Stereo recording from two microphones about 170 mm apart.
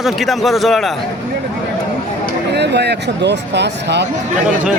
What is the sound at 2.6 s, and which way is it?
Speech, 80° right.